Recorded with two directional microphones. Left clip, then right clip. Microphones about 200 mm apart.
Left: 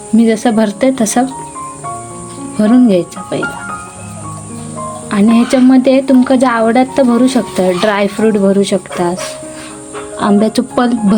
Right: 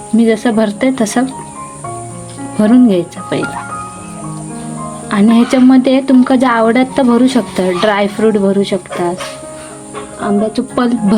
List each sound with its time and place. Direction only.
0.2 s a woman's voice: 5° left (ahead or behind)
2.6 s a woman's voice: centre (ahead or behind)
3.3 s speech: 10° right (ahead or behind)
5.0 s a woman's voice: centre (ahead or behind)
10.2 s speech: 35° left (ahead or behind)